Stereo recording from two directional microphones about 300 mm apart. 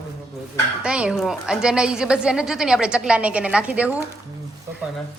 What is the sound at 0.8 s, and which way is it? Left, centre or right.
A woman's voice, centre.